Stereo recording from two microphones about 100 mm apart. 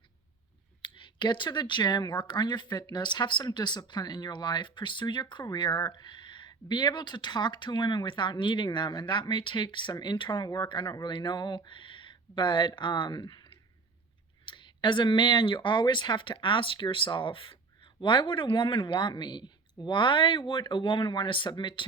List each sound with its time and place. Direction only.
0.8 s speech: 55° left (ahead or behind)
14.4 s speech: 50° left (ahead or behind)